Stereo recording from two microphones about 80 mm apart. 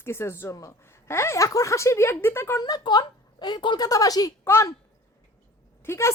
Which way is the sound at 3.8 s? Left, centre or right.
Left.